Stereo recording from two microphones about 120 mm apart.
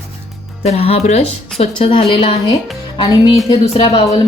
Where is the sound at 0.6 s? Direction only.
60° left (ahead or behind).